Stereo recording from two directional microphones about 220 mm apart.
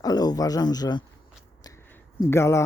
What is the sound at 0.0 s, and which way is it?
Speech, 15° left (ahead or behind).